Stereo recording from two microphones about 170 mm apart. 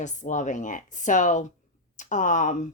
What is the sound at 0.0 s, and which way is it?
Speech, 45° left (ahead or behind).